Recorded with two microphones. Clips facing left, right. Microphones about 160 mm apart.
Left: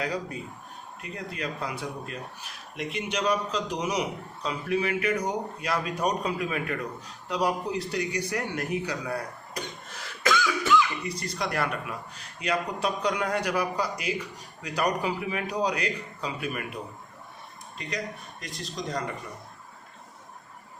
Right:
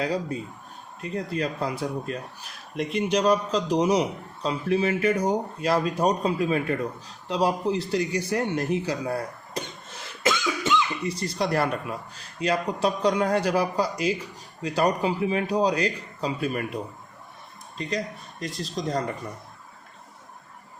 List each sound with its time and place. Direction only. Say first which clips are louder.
0.0 s a man's voice: right 4 dB; 30° right (ahead or behind)
2.7 s a man's voice: right 7 dB; 35° right (ahead or behind)
17.7 s a man's voice: right 5 dB; 30° right (ahead or behind)